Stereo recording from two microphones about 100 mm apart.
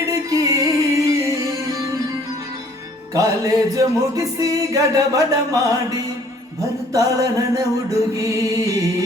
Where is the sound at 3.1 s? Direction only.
35° right (ahead or behind).